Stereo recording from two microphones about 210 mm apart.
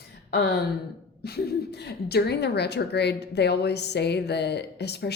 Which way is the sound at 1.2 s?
50° left (ahead or behind).